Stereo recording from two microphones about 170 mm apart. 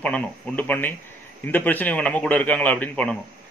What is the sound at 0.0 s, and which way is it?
A man's voice, 5° left (ahead or behind).